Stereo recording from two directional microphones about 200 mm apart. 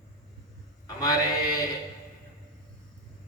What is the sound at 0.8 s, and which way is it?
Mantra, 20° left (ahead or behind).